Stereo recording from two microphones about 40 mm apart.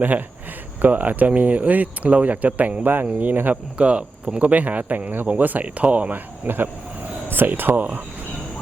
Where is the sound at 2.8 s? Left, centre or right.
Right.